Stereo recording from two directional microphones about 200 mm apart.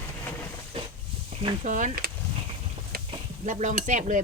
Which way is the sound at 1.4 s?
35° right (ahead or behind).